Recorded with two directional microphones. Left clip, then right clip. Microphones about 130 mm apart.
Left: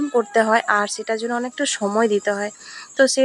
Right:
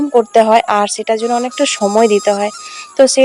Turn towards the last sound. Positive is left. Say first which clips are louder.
# right 7 dB
turn(degrees=-30)  # may be behind; listen again after turning